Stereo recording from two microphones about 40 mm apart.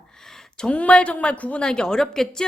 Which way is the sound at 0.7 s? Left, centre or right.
Left.